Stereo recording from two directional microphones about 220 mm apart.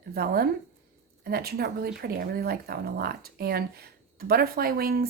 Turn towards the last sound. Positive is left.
turn(degrees=-40)  # may be behind; listen again after turning